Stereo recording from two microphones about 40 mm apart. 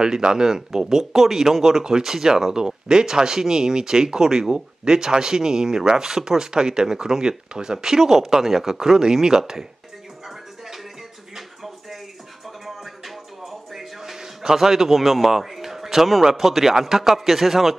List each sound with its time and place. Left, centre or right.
0.0 s speech: centre
10.2 s music: centre
11.3 s a sound: centre
12.4 s music: centre
15.3 s a man's voice: centre